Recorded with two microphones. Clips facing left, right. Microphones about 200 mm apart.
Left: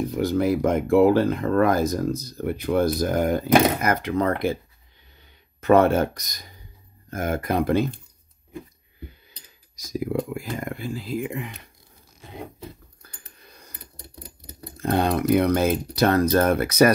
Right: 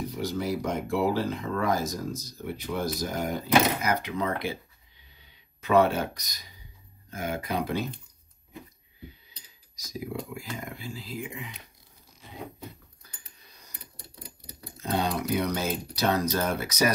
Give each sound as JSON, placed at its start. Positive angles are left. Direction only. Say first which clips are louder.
{"t": 0.1, "sound": "speech", "louder": "left 10 dB", "side_deg": 55}
{"t": 9.8, "sound": "speech", "louder": "left 9 dB", "side_deg": 55}
{"t": 13.4, "sound": "a sound", "louder": "left 7 dB", "side_deg": 55}
{"t": 14.4, "sound": "speech", "louder": "left 9 dB", "side_deg": 50}